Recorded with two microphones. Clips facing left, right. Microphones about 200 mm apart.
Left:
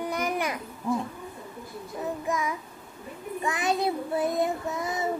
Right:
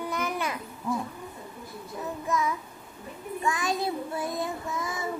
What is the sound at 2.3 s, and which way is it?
Child singing, 15° left (ahead or behind).